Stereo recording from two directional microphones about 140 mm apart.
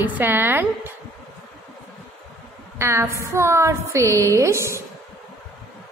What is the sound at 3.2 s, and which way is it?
A woman's voice, 20° right (ahead or behind).